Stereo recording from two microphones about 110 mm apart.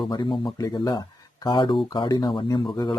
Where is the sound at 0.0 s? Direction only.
45° left (ahead or behind).